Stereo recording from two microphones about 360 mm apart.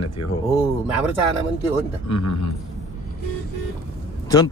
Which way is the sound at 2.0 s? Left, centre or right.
Left.